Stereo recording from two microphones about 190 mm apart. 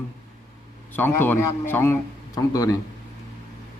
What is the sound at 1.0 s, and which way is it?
A man's voice, 10° left (ahead or behind).